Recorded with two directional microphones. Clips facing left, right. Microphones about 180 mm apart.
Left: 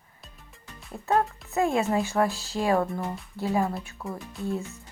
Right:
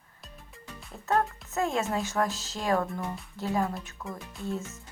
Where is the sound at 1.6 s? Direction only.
15° left (ahead or behind).